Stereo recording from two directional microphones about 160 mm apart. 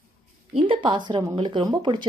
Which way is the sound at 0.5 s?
35° right (ahead or behind).